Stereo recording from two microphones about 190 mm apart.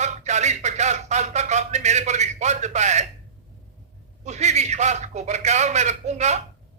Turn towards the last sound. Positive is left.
turn(degrees=-35)  # may be behind; listen again after turning